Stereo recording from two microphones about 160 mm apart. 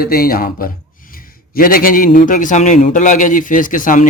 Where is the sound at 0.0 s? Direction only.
70° left (ahead or behind).